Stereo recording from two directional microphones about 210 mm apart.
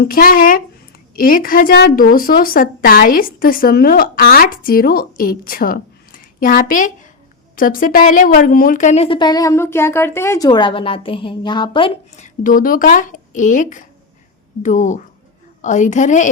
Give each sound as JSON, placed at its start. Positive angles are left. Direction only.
{"t": 0.0, "sound": "a woman's voice", "side_deg": 45}